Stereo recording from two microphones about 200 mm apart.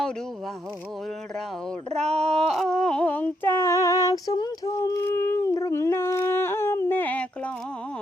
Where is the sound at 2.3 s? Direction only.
5° left (ahead or behind).